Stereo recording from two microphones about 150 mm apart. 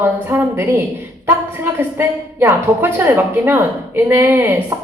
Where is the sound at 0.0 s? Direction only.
15° right (ahead or behind).